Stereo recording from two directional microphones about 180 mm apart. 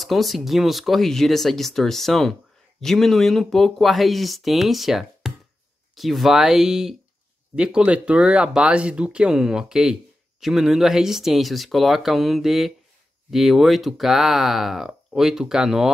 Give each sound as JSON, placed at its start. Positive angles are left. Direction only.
{"t": 0.0, "sound": "speech", "side_deg": 0}